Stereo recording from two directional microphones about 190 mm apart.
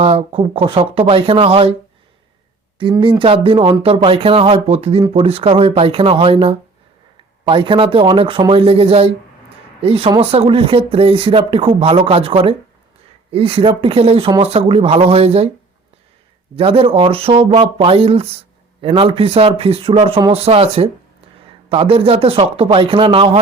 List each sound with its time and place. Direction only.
0.0 s speech: 30° right (ahead or behind)
2.7 s speech: 25° right (ahead or behind)
16.6 s speech: 30° right (ahead or behind)
21.7 s speech: 30° right (ahead or behind)